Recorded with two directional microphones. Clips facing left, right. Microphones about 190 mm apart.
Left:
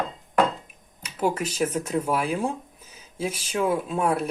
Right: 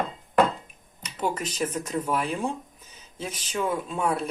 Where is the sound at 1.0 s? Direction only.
10° left (ahead or behind).